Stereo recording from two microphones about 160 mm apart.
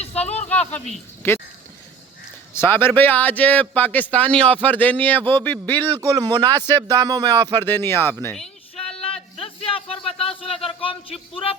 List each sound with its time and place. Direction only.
0.0 s a sound: 40° left (ahead or behind)
0.7 s a man's voice: 10° left (ahead or behind)
2.5 s a man's voice: 15° left (ahead or behind)
6.0 s speech: 25° right (ahead or behind)
7.5 s a man's voice: 10° left (ahead or behind)
9.4 s a sound: 35° left (ahead or behind)